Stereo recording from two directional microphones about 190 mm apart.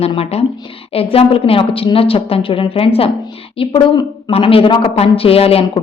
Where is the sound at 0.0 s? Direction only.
30° left (ahead or behind).